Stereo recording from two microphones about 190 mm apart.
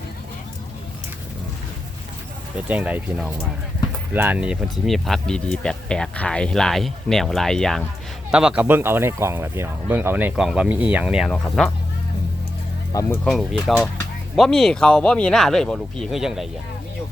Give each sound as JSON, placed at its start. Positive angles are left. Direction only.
{"t": 2.6, "sound": "speech", "side_deg": -5}
{"t": 12.9, "sound": "speech", "side_deg": 15}
{"t": 13.2, "sound": "speech", "side_deg": 0}